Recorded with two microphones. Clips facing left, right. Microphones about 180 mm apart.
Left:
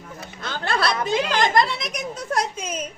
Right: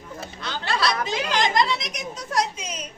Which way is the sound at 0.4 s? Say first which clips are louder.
Left 1 dB; 50° left (ahead or behind).